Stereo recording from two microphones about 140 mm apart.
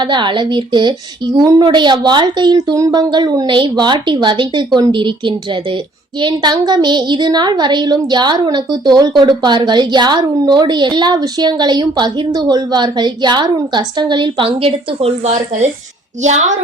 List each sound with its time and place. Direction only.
0.0 s a woman's voice: 35° right (ahead or behind)
16.2 s a woman's voice: 60° right (ahead or behind)